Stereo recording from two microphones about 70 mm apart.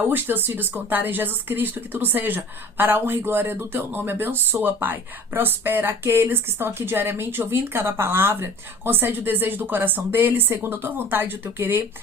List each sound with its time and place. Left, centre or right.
0.0 s speech: right